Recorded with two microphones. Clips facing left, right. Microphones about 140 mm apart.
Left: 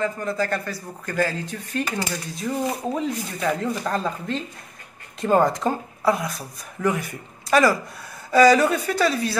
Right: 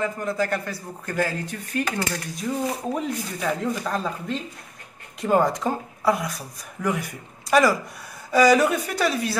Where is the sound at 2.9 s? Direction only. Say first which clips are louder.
Left 1 dB; 5° right (ahead or behind).